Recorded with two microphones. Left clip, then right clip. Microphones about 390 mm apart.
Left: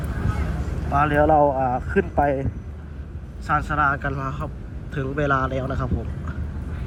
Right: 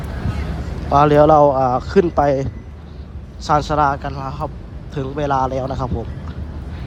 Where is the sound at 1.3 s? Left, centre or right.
Left.